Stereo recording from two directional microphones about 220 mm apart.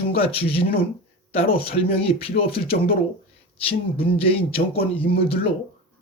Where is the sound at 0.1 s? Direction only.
25° left (ahead or behind).